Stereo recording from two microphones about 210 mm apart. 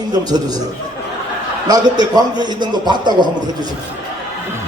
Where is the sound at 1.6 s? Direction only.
20° right (ahead or behind).